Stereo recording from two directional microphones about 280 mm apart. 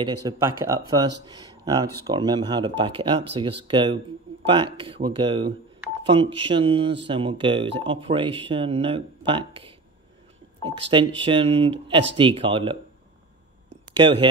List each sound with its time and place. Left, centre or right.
0.0 s speech: centre
13.9 s speech: centre